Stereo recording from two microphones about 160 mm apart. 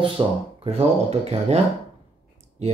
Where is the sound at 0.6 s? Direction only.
40° right (ahead or behind).